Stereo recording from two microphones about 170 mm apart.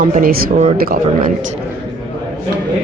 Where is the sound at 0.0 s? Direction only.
55° right (ahead or behind).